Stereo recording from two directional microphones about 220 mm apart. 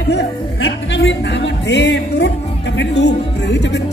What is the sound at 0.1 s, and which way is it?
Speech, 50° left (ahead or behind).